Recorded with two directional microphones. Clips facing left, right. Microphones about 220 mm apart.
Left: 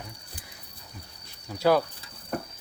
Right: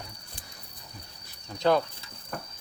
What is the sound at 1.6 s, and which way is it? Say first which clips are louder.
Speech: left 2 dB; 5° left (ahead or behind).